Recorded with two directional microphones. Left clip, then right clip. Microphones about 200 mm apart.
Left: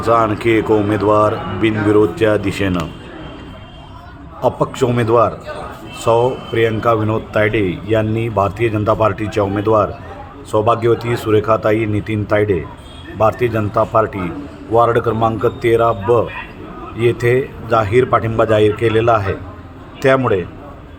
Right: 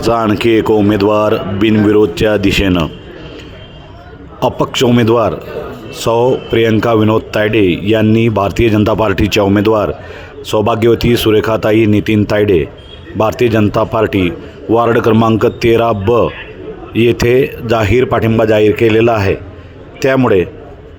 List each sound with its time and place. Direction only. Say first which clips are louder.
0.0 s a man's voice: right 2 dB; 40° right (ahead or behind)
4.4 s a man's voice: right 3 dB; 40° right (ahead or behind)